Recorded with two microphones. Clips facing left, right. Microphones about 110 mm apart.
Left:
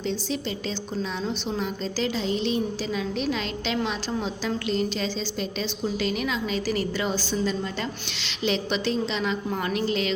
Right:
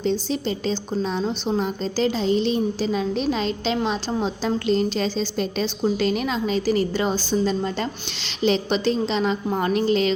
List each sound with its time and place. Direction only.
0.0 s a woman's voice: 35° right (ahead or behind)